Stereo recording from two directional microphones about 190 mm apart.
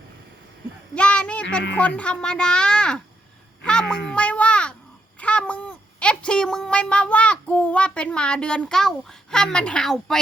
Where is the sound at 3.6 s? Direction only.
5° left (ahead or behind).